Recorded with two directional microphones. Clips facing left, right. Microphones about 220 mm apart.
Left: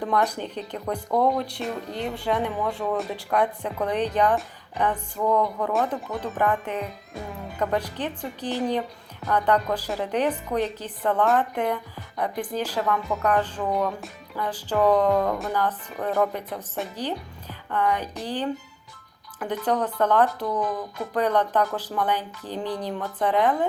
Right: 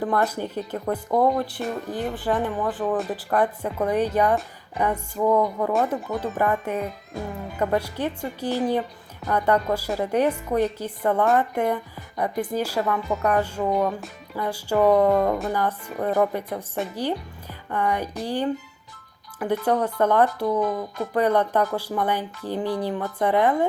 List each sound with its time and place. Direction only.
0.0 s speech: 5° right (ahead or behind)
17.7 s music: 10° right (ahead or behind)
18.2 s speech: 10° right (ahead or behind)